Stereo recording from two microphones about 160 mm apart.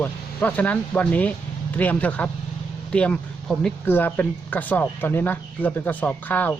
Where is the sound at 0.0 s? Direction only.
10° left (ahead or behind).